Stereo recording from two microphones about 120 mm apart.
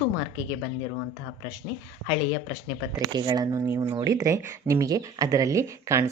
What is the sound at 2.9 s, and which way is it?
Speech, 40° right (ahead or behind).